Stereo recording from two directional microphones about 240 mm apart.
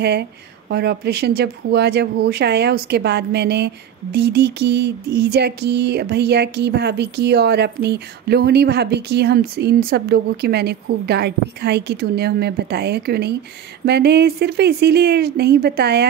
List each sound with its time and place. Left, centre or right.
0.0 s speech: right